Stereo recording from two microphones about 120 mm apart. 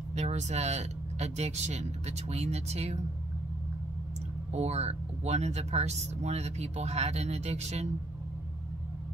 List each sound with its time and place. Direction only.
0.1 s speech: 75° right (ahead or behind)
4.5 s speech: 65° right (ahead or behind)